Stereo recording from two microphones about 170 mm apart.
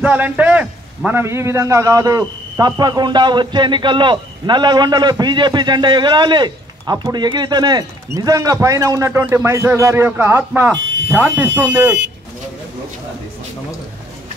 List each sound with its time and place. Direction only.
0.0 s a man's voice: 10° right (ahead or behind)